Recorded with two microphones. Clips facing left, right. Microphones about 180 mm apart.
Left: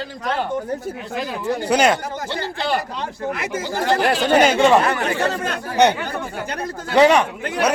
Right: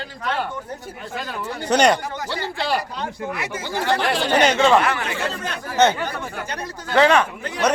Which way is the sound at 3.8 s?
40° left (ahead or behind).